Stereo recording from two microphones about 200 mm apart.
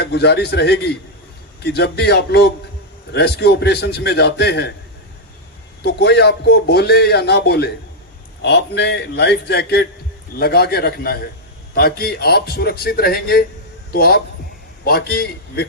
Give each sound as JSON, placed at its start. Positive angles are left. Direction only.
{"t": 0.0, "sound": "a man's voice", "side_deg": 55}
{"t": 5.8, "sound": "a man's voice", "side_deg": 55}